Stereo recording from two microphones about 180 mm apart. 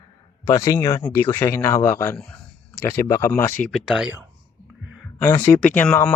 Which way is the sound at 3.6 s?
Centre (ahead or behind).